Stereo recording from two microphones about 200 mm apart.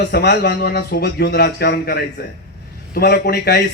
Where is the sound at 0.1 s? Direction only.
55° left (ahead or behind).